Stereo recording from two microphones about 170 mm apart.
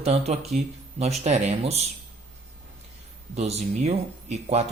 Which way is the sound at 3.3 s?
40° right (ahead or behind).